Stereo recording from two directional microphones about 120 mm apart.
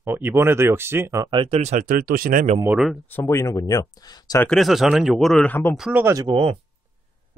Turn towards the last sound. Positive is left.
turn(degrees=-50)  # may be behind; listen again after turning